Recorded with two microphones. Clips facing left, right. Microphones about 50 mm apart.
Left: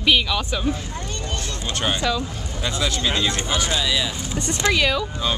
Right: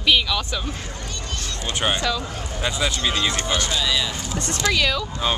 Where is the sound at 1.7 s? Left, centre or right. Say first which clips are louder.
Right 1 dB; centre.